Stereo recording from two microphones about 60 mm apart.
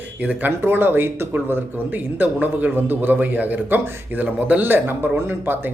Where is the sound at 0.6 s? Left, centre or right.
Right.